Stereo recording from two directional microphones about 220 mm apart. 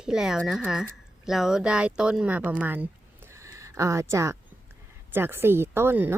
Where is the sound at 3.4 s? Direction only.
15° right (ahead or behind).